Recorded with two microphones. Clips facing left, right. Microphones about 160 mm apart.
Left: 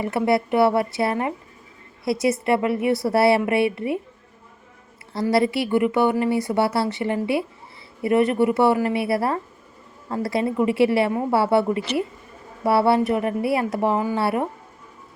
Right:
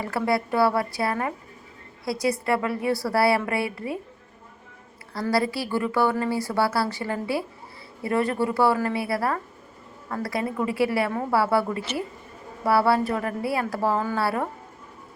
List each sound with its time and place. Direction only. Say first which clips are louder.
0.0 s a woman's voice: left 4 dB; 25° left (ahead or behind)
5.3 s a woman's voice: left 5 dB; 25° left (ahead or behind)